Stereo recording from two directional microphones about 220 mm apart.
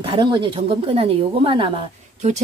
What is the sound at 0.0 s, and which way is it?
A woman's voice, 20° right (ahead or behind).